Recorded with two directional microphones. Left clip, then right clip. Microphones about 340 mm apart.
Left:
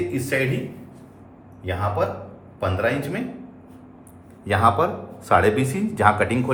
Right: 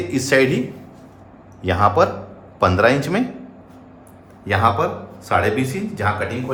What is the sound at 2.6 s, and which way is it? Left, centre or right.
Speech, centre.